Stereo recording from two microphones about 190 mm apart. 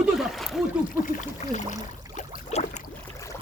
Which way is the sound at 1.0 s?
40° left (ahead or behind).